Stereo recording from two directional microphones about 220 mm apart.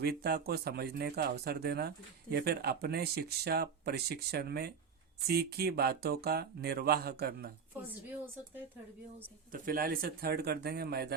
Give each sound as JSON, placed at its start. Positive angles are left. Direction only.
{"t": 0.0, "sound": "speech", "side_deg": -45}
{"t": 9.5, "sound": "speech", "side_deg": -40}